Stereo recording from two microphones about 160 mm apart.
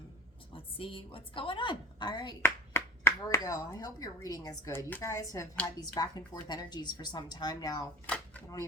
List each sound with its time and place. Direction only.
0.5 s a woman's voice: 35° left (ahead or behind)
2.4 s speech: 15° left (ahead or behind)
8.0 s a sound: 10° left (ahead or behind)